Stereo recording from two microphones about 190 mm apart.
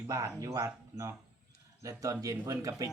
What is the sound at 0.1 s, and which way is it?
Speech, 15° right (ahead or behind).